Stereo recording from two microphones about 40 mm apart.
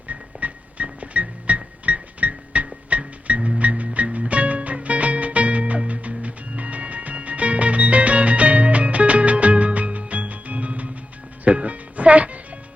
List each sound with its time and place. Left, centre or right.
0.1 s music: right